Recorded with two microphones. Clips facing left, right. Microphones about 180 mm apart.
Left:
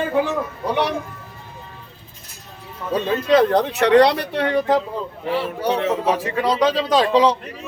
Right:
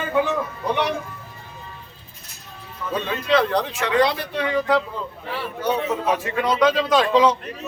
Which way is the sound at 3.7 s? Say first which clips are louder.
Left 6 dB; 65° left (ahead or behind).